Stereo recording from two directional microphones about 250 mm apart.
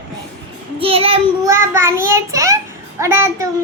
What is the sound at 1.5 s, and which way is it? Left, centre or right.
Child singing, centre.